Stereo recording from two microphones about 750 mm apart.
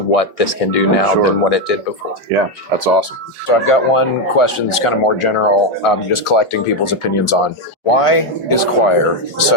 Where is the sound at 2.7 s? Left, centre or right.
Right.